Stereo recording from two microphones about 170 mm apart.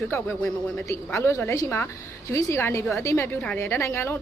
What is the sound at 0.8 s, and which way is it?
Speech, 15° left (ahead or behind).